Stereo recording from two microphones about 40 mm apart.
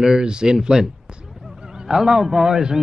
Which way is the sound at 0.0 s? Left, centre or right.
Centre.